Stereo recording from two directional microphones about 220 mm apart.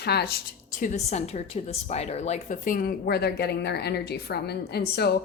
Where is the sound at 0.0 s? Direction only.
45° left (ahead or behind).